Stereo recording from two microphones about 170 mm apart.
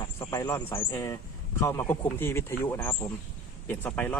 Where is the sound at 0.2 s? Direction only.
15° left (ahead or behind).